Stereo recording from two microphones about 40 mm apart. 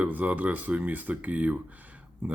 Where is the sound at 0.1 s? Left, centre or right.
Right.